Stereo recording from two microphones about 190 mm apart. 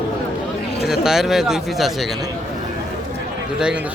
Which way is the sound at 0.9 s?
Centre (ahead or behind).